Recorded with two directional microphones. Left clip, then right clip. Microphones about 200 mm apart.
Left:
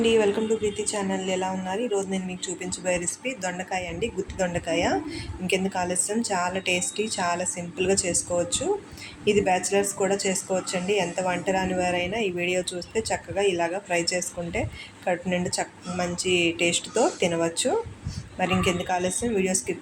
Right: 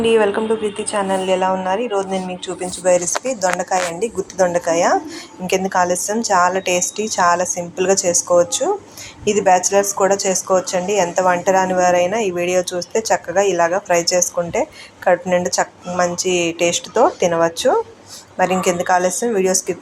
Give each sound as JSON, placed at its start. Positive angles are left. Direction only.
{"t": 0.0, "sound": "a woman's voice", "side_deg": -5}